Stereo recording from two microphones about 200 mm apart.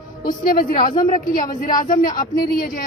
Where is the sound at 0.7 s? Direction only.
30° left (ahead or behind).